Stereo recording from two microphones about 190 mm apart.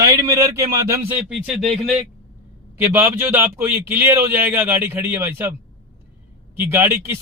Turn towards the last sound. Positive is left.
turn(degrees=-15)  # may be behind; listen again after turning